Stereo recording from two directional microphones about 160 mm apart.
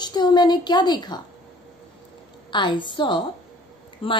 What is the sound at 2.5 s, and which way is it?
A woman's voice, 30° left (ahead or behind).